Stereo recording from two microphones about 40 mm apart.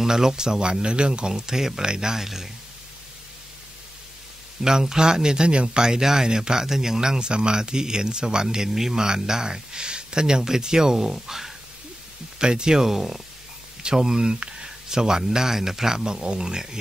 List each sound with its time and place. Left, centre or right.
0.0 s speech: centre
4.6 s speech: centre
8.6 s speech: centre
12.4 s speech: right
13.9 s speech: centre